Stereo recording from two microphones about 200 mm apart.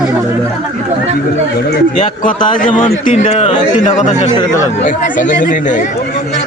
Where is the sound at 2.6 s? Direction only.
40° left (ahead or behind).